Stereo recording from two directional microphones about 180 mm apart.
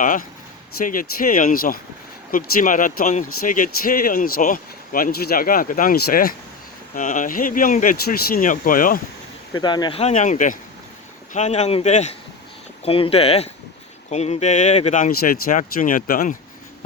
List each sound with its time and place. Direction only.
0.0 s speech: 45° left (ahead or behind)
9.5 s speech: 25° left (ahead or behind)
10.0 s speech: 40° left (ahead or behind)